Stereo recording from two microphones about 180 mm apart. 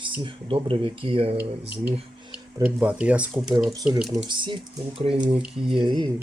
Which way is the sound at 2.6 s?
5° right (ahead or behind).